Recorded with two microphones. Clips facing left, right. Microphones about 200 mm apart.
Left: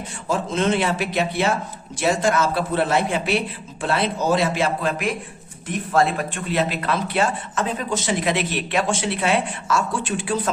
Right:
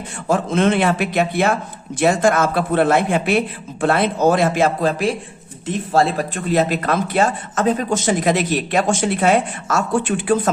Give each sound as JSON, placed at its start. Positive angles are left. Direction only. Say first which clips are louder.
{"t": 0.3, "sound": "a man's voice", "louder": "right 4 dB", "side_deg": -55}